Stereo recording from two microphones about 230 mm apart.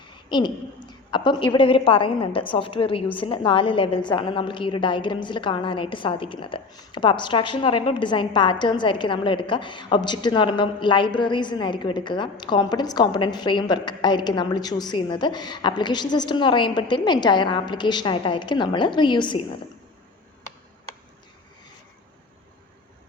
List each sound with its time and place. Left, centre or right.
0.3 s a woman's voice: centre